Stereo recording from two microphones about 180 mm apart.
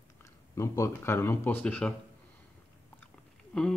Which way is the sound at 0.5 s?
15° left (ahead or behind).